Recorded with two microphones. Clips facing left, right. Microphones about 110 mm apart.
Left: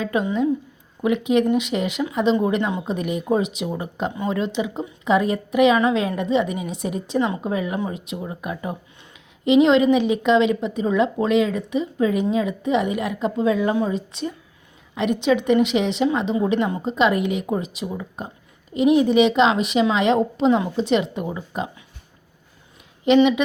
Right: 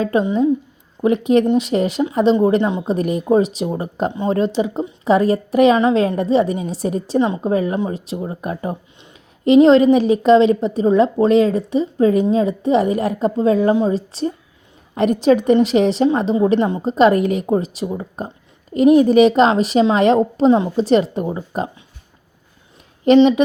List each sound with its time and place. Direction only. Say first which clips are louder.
0.0 s a woman's voice: right 5 dB; 35° right (ahead or behind)
7.2 s speech: right 4 dB; 25° right (ahead or behind)
7.5 s a woman's voice: right 6 dB; 40° right (ahead or behind)
16.8 s a woman's voice: right 6 dB; 40° right (ahead or behind)
23.0 s a woman's voice: right 5 dB; 40° right (ahead or behind)